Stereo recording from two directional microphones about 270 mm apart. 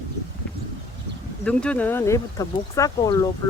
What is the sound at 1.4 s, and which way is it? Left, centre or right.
Speech, centre.